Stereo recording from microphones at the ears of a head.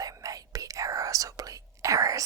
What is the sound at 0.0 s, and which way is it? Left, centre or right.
Whispering, right.